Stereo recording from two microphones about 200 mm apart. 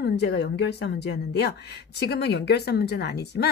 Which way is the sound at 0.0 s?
55° left (ahead or behind).